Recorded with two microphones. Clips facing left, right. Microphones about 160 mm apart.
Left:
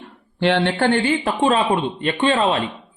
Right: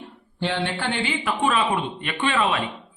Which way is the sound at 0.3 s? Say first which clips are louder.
Left 8 dB; 75° left (ahead or behind).